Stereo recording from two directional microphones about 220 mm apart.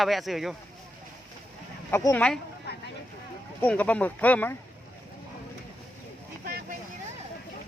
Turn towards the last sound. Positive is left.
turn(degrees=-45)  # may be behind; listen again after turning